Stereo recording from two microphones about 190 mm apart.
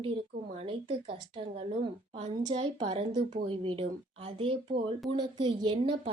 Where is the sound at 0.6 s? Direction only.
30° right (ahead or behind).